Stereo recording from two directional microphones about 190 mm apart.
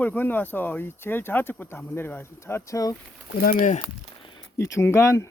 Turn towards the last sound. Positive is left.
turn(degrees=15)  # may be behind; listen again after turning